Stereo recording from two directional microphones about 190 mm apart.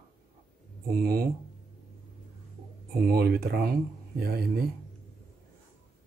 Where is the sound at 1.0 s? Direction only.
50° right (ahead or behind).